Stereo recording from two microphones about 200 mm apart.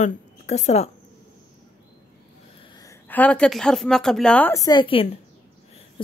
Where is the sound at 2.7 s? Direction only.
15° left (ahead or behind).